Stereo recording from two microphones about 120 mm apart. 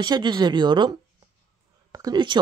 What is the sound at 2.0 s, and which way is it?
Speech, 40° right (ahead or behind).